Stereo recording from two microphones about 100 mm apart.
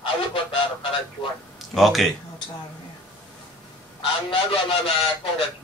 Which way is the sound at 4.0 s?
65° left (ahead or behind).